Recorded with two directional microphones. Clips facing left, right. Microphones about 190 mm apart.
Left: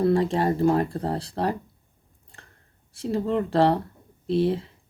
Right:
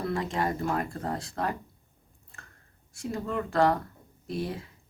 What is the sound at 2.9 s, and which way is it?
Speech, 30° left (ahead or behind).